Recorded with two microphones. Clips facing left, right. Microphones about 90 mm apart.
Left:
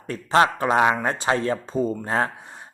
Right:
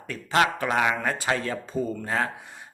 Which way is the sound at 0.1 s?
30° left (ahead or behind).